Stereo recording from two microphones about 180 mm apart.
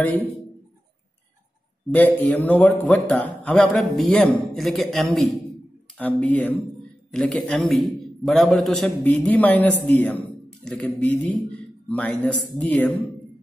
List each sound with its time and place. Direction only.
1.9 s a man's voice: 10° left (ahead or behind)